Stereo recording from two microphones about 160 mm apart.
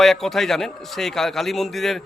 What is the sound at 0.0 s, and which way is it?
A man's voice, centre (ahead or behind).